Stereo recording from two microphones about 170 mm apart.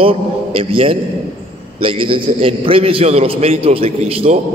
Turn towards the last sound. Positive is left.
turn(degrees=-35)  # may be behind; listen again after turning